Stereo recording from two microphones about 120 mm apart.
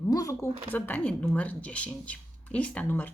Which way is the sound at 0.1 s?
30° left (ahead or behind).